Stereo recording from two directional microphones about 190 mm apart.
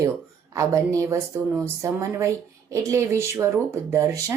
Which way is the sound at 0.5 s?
15° right (ahead or behind).